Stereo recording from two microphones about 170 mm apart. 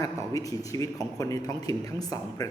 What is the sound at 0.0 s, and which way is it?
A man's voice, 20° left (ahead or behind).